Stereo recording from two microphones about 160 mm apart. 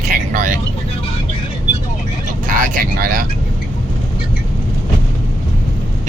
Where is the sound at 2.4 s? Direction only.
55° right (ahead or behind).